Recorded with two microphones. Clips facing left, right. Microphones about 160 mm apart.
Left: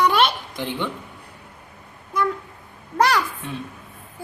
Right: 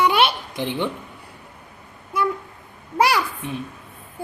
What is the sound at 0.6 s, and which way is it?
Speech, 15° right (ahead or behind).